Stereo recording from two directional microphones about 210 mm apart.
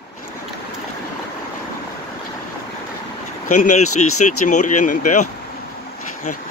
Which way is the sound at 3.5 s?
35° left (ahead or behind).